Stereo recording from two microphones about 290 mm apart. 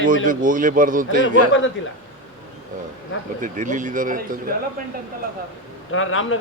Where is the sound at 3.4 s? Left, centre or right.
Right.